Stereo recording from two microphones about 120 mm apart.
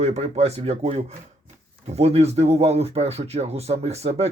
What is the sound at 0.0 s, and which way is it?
Speech, 65° right (ahead or behind).